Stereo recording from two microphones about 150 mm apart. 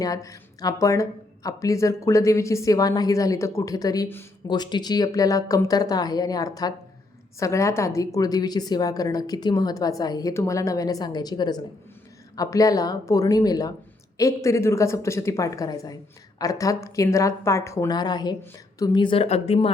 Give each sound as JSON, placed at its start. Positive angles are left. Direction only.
{"t": 0.0, "sound": "a woman's voice", "side_deg": 25}